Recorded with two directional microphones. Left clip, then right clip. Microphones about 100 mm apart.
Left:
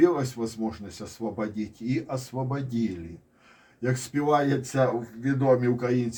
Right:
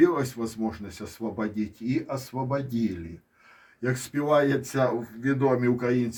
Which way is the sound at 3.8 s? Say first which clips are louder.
Even; 5° left (ahead or behind).